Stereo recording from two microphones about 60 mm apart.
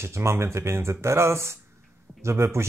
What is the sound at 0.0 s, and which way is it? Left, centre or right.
Speech, right.